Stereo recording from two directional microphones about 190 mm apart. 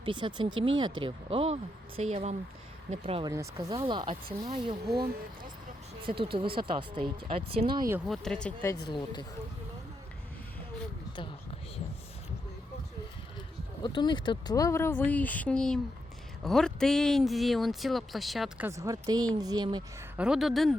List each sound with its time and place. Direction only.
0.0 s speech: 25° right (ahead or behind)
6.0 s speech: 25° right (ahead or behind)
8.0 s speech: centre (ahead or behind)
8.9 s speech: 25° left (ahead or behind)
13.8 s speech: 25° left (ahead or behind); by 19.8 s 20° right (ahead or behind)
20.1 s speech: 5° right (ahead or behind)